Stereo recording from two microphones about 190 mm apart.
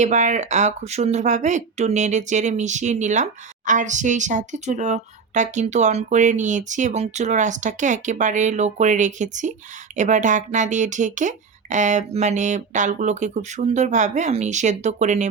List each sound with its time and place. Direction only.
0.0 s speech: 40° right (ahead or behind)